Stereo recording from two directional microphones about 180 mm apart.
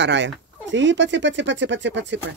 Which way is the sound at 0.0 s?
80° right.